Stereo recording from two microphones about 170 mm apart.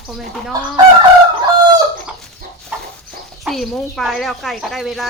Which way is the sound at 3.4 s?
Centre (ahead or behind).